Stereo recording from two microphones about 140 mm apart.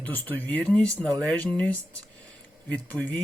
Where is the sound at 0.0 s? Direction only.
15° left (ahead or behind).